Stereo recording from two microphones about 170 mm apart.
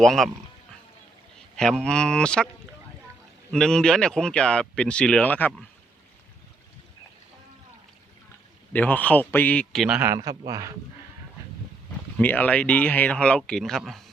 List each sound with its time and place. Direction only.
0.0 s speech: centre (ahead or behind)
1.5 s speech: 5° left (ahead or behind)
3.5 s speech: 5° left (ahead or behind)
8.7 s speech: 10° left (ahead or behind)
10.0 s a man's voice: 20° right (ahead or behind)
12.1 s speech: 10° left (ahead or behind)